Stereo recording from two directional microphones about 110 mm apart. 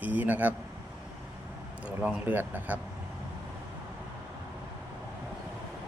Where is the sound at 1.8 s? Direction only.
10° right (ahead or behind).